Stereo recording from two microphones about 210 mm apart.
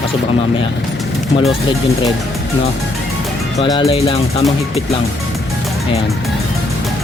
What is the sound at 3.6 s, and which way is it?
Speech, 20° left (ahead or behind).